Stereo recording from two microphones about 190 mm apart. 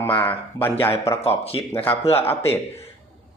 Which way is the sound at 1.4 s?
30° left (ahead or behind).